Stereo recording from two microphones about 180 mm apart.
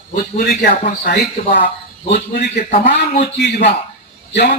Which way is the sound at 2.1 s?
60° left (ahead or behind).